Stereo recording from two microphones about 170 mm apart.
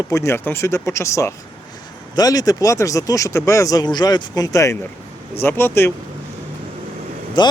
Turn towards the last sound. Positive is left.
turn(degrees=25)  # may be behind; listen again after turning